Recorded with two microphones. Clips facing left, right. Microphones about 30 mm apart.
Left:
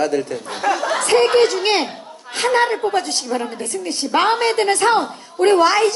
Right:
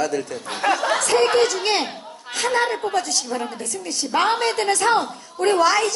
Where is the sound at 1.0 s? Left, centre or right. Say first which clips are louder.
Left 6 dB; left.